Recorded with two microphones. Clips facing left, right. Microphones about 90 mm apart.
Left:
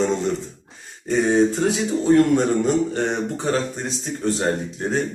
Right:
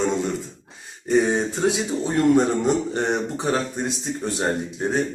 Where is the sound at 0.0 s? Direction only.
5° right (ahead or behind).